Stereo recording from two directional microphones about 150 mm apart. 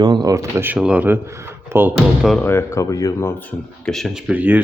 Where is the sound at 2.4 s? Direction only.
15° left (ahead or behind).